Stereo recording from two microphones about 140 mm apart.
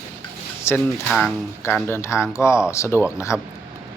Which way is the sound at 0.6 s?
20° left (ahead or behind).